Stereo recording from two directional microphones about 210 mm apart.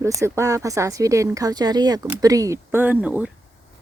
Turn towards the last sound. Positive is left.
turn(degrees=-5)  # may be behind; listen again after turning